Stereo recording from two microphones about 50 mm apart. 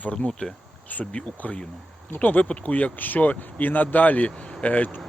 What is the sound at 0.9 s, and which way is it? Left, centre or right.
Speech, left.